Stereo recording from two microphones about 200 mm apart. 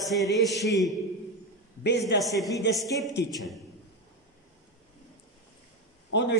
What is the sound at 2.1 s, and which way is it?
Speech, 60° left (ahead or behind).